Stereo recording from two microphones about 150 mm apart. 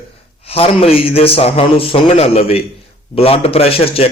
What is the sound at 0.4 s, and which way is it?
A man's voice, 40° left (ahead or behind).